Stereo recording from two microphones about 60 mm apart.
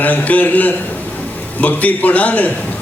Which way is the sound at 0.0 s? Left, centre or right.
Left.